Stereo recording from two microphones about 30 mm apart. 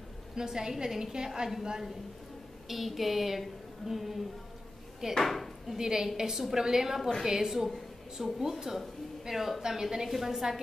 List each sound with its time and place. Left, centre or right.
0.4 s a woman's voice: centre
2.7 s speech: centre
5.8 s a woman's voice: centre
6.3 s a woman's voice: centre
10.0 s speech: centre